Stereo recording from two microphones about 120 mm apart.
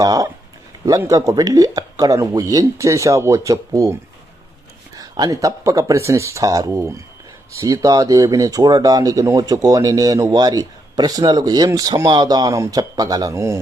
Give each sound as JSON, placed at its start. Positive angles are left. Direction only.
{"t": 0.0, "sound": "speech", "side_deg": -30}
{"t": 4.9, "sound": "speech", "side_deg": -30}